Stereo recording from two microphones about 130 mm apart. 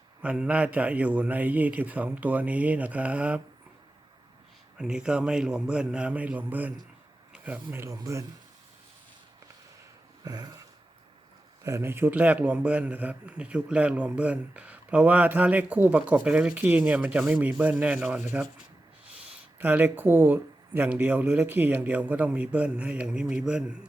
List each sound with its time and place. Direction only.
0.2 s a man's voice: 10° right (ahead or behind)
4.8 s a man's voice: 5° right (ahead or behind); by 8.2 s 25° right (ahead or behind)
10.2 s a sound: 30° right (ahead or behind)
11.6 s a man's voice: 20° right (ahead or behind)
19.5 s a man's voice: 15° right (ahead or behind)